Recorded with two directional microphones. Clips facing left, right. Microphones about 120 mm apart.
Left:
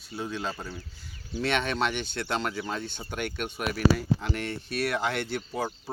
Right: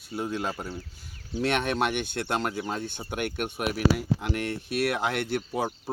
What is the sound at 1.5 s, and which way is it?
Speech, 50° right (ahead or behind).